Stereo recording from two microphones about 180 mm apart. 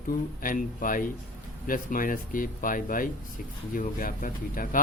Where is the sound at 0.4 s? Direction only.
50° left (ahead or behind).